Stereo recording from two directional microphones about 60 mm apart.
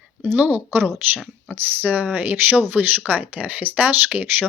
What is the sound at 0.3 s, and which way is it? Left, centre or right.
Speech, right.